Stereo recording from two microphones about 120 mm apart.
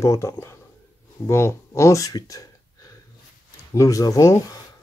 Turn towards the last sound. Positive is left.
turn(degrees=25)  # may be behind; listen again after turning